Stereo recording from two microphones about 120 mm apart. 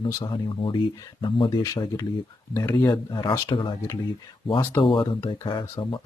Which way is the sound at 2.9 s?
40° left (ahead or behind).